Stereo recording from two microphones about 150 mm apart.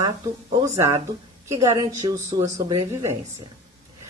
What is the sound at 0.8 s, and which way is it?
A woman's voice, 20° right (ahead or behind).